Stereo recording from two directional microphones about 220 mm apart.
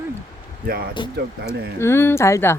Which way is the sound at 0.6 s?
45° right (ahead or behind).